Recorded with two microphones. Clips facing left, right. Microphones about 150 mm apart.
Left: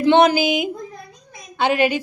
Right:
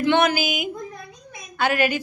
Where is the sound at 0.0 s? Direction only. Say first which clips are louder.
Left 5 dB; 35° left (ahead or behind).